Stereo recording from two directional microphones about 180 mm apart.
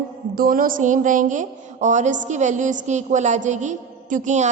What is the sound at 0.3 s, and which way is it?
A woman's voice, 50° right (ahead or behind).